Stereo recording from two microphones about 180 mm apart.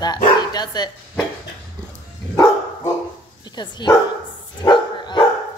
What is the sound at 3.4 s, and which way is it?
Dog, 25° left (ahead or behind).